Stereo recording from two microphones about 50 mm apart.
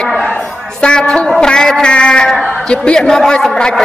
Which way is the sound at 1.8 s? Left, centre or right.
Centre.